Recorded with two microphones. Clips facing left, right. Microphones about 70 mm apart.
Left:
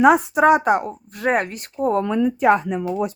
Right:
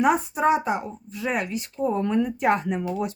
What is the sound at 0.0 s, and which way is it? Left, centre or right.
Speech, left.